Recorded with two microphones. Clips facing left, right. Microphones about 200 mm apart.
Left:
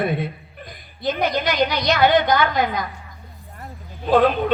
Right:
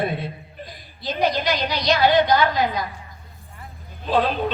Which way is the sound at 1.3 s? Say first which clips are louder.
Left 3 dB; 50° left (ahead or behind).